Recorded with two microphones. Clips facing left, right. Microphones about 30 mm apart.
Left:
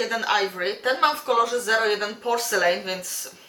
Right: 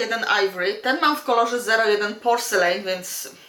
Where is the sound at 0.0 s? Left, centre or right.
Centre.